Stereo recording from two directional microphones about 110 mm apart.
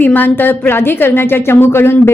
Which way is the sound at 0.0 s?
15° left (ahead or behind).